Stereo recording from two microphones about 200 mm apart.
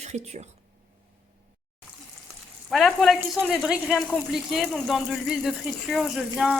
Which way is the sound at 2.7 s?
Centre (ahead or behind).